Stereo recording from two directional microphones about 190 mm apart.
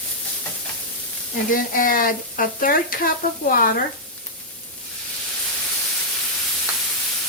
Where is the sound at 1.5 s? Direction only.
45° left (ahead or behind).